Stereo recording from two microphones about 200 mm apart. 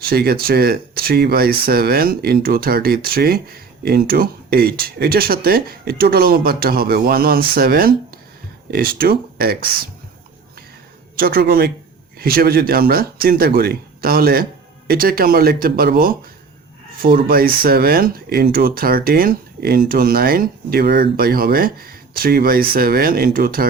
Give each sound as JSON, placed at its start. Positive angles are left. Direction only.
{"t": 0.1, "sound": "speech", "side_deg": -50}
{"t": 11.2, "sound": "speech", "side_deg": -50}